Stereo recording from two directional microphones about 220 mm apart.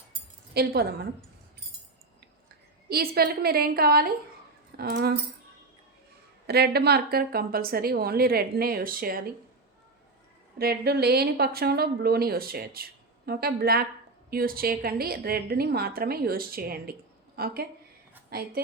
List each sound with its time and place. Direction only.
0.5 s speech: 45° right (ahead or behind)
2.9 s speech: 45° right (ahead or behind)
6.5 s speech: 45° right (ahead or behind)
10.6 s a woman's voice: 45° right (ahead or behind)